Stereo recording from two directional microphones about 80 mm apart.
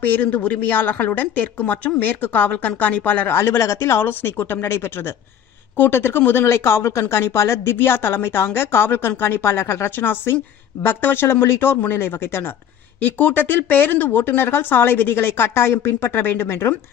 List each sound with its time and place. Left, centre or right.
0.0 s a woman's voice: left